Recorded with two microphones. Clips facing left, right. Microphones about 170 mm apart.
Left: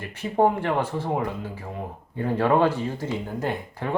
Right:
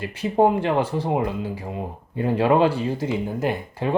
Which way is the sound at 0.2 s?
15° right (ahead or behind).